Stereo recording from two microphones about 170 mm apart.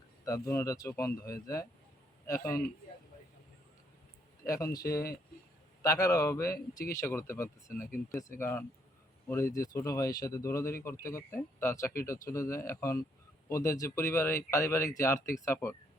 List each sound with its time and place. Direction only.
0.3 s speech: 15° left (ahead or behind)
4.4 s speech: 20° left (ahead or behind)